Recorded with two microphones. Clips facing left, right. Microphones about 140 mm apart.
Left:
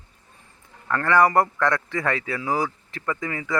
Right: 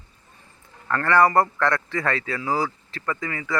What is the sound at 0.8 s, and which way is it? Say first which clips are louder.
Speech: even; 10° left (ahead or behind).